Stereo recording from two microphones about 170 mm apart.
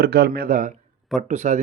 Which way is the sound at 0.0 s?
70° right (ahead or behind).